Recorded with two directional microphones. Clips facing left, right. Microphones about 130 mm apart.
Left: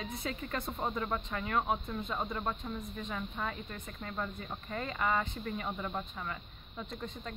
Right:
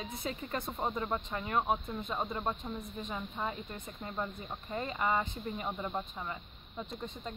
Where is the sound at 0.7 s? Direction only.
5° right (ahead or behind).